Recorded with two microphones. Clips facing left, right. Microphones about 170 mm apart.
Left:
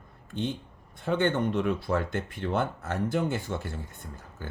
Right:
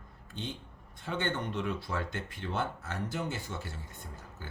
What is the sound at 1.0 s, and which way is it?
Speech, 55° left (ahead or behind).